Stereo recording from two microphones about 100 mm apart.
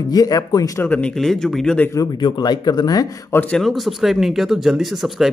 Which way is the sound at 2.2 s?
45° left (ahead or behind).